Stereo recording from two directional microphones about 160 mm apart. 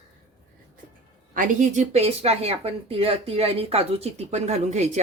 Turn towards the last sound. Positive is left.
turn(degrees=-45)  # may be behind; listen again after turning